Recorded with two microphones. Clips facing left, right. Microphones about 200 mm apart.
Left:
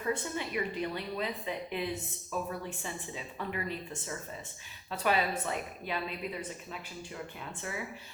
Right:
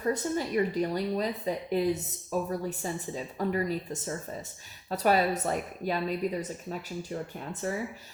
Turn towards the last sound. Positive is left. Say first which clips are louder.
# right 7 dB
turn(degrees=-40)  # may be behind; listen again after turning